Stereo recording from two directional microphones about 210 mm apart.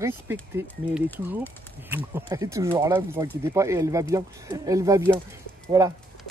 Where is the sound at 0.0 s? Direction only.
10° right (ahead or behind).